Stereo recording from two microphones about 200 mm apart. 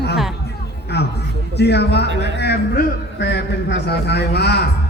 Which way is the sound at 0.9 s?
55° left (ahead or behind).